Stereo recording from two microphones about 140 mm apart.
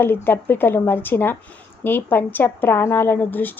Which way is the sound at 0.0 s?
15° left (ahead or behind).